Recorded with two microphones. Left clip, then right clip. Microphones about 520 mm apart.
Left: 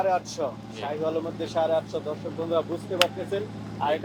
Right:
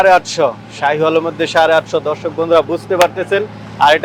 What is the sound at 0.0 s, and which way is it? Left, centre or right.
Speech, right.